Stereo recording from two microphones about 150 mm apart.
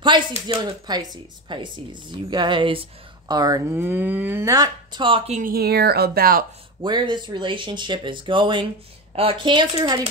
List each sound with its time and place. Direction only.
0.6 s speech: 30° right (ahead or behind)
3.7 s speech: 15° right (ahead or behind); by 5.3 s 35° right (ahead or behind)
5.3 s speech: 75° right (ahead or behind)
6.8 s speech: 30° right (ahead or behind)